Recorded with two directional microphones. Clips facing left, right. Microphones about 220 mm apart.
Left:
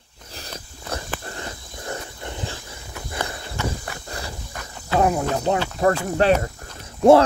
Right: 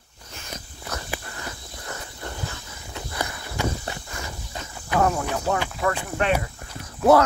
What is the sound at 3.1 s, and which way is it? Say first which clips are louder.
Walk: left 2 dB; 30° left (ahead or behind).